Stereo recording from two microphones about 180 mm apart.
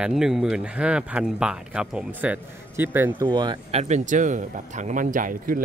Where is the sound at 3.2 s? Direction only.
25° right (ahead or behind).